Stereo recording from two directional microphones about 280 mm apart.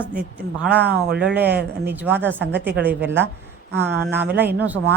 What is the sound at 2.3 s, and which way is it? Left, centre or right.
Speech, right.